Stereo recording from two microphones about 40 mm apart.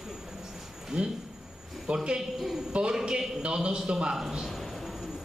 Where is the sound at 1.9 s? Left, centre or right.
Right.